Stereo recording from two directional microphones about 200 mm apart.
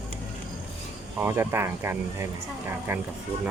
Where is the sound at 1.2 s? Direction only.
10° right (ahead or behind).